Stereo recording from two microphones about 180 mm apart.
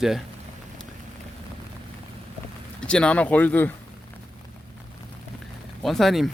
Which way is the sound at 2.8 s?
5° left (ahead or behind).